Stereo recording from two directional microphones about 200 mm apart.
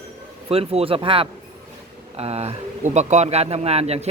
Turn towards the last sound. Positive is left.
turn(degrees=-30)  # may be behind; listen again after turning